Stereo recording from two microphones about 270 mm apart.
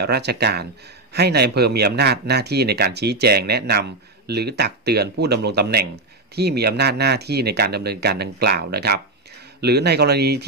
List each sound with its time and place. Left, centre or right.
0.0 s speech: right